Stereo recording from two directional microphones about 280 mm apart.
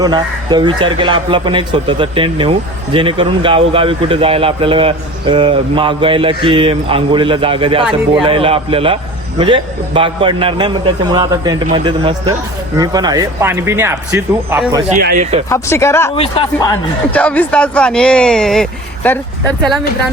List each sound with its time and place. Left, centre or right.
0.0 s a man's voice: centre
14.8 s a man's voice: right
15.4 s speech: centre